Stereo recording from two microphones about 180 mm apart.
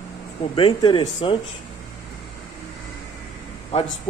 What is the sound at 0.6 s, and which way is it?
Speech, 25° left (ahead or behind).